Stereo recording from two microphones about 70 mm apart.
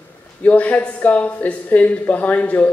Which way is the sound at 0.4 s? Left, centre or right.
Left.